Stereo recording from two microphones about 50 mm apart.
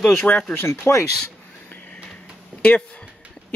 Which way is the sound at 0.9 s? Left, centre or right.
Left.